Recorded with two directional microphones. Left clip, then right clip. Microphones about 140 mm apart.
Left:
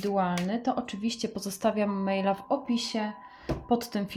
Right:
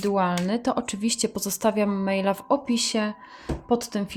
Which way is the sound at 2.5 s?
75° right (ahead or behind).